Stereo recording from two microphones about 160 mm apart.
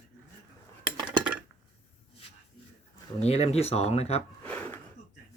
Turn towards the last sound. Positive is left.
turn(degrees=10)  # may be behind; listen again after turning